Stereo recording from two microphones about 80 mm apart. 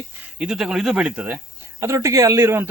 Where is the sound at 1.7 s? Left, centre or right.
Right.